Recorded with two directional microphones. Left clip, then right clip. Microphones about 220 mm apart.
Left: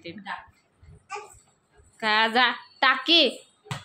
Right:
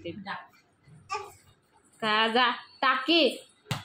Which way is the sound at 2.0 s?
15° left (ahead or behind).